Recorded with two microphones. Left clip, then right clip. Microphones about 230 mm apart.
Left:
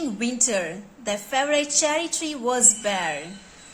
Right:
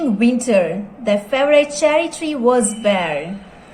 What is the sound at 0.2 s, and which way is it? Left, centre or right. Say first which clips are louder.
A woman's voice: right 10 dB; centre.